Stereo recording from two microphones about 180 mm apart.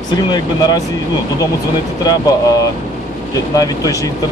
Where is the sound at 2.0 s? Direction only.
20° left (ahead or behind).